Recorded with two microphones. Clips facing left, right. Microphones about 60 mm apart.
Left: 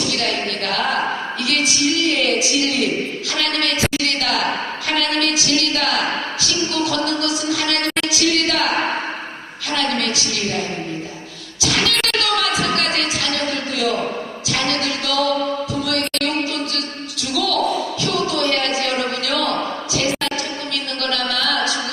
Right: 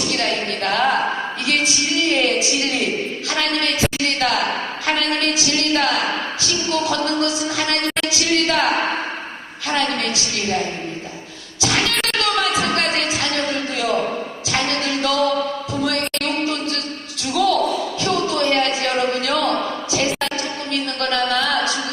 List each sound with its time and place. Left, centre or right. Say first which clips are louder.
0.1 s music: even; right
3.2 s a sound: right 2 dB; right
9.7 s a woman's voice: even; right
11.6 s music: even; right
17.3 s basketball bounce: right 4 dB; right
18.0 s a sound: right 2 dB; right